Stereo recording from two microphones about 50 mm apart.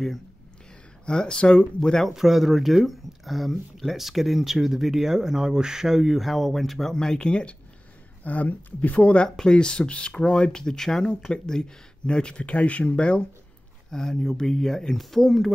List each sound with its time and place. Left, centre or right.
1.0 s speech: centre
2.1 s speech: centre
8.2 s speech: left
13.8 s speech: centre